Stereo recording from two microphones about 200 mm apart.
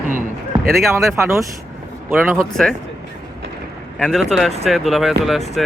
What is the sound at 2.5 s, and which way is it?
Speech, 5° left (ahead or behind).